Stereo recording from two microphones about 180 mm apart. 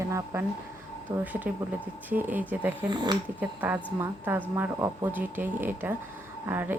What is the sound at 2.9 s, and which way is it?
Speech, 25° right (ahead or behind).